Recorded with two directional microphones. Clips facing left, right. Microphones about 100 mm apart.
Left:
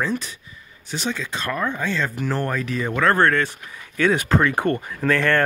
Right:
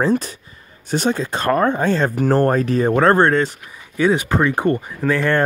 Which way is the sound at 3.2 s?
25° right (ahead or behind).